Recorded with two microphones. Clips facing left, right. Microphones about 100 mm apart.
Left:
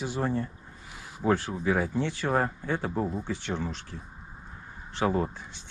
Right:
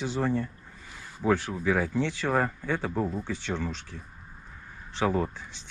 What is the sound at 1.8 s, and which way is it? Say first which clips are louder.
Speech: right 1 dB; 15° left (ahead or behind).